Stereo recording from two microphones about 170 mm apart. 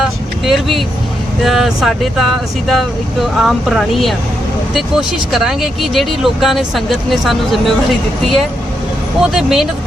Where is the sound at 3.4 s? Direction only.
Centre (ahead or behind).